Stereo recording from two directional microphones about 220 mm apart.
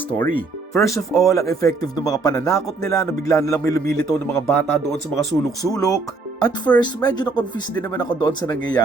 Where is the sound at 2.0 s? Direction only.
15° left (ahead or behind).